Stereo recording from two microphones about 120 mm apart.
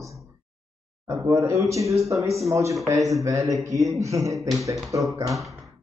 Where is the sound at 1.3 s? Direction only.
25° right (ahead or behind).